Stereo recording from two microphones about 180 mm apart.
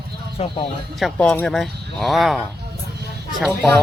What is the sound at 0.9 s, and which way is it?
Speech, centre (ahead or behind).